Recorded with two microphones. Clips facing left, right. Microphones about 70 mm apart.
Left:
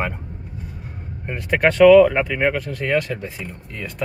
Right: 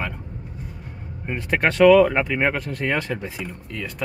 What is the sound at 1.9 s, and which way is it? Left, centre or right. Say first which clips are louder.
Speech: left 4 dB; centre.